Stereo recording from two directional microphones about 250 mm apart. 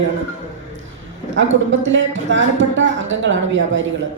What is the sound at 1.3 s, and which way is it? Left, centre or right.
Speech, right.